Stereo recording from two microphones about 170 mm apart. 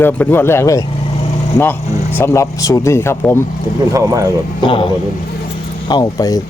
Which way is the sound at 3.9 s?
20° right (ahead or behind).